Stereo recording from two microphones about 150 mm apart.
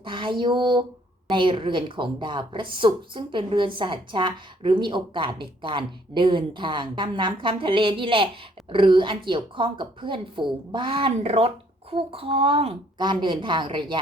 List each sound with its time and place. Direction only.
0.0 s speech: 35° right (ahead or behind)